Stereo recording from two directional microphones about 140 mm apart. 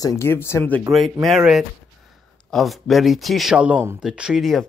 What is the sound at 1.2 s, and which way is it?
Speech, centre (ahead or behind).